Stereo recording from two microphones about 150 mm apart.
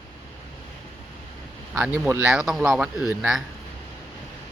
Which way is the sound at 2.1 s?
20° right (ahead or behind).